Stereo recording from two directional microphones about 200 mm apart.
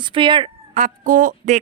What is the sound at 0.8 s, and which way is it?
Speech, 40° right (ahead or behind).